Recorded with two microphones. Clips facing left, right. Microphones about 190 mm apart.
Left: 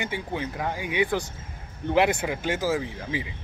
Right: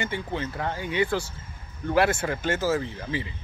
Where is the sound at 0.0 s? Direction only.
15° left (ahead or behind).